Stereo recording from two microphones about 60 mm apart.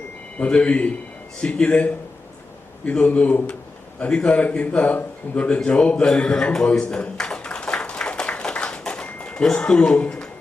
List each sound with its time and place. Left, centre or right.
0.3 s a man's voice: centre
8.8 s a sound: centre
9.0 s speech: centre